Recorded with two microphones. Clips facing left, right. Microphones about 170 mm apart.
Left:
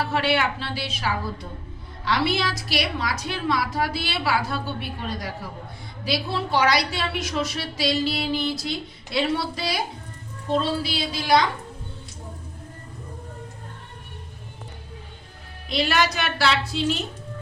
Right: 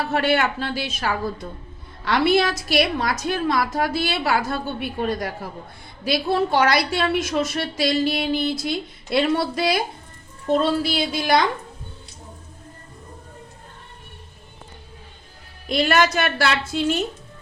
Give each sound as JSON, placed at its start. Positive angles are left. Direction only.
{"t": 0.0, "sound": "a woman's voice", "side_deg": -50}
{"t": 15.7, "sound": "a woman's voice", "side_deg": -50}